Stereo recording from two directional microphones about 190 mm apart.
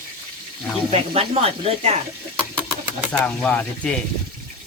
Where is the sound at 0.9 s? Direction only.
30° right (ahead or behind).